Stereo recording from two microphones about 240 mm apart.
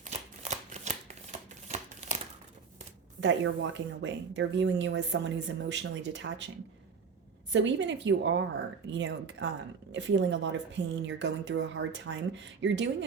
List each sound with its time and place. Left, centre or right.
0.0 s shuffling cards: right
3.2 s a woman's voice: right
7.5 s a woman's voice: right